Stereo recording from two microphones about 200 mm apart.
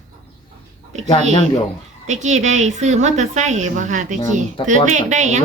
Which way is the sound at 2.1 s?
35° right (ahead or behind).